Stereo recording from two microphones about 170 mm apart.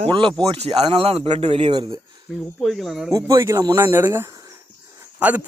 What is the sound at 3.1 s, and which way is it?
Speech, 20° right (ahead or behind).